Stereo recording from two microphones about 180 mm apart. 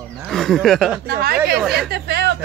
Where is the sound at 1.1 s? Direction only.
55° right (ahead or behind).